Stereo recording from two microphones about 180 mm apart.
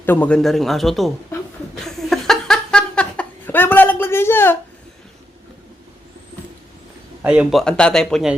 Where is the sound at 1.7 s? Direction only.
Centre (ahead or behind).